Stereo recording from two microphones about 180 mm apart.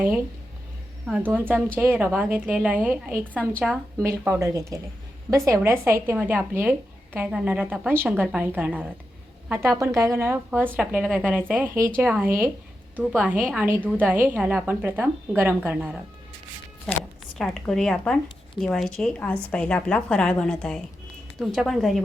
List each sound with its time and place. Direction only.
1.0 s speech: 10° right (ahead or behind)
17.3 s a woman's voice: centre (ahead or behind)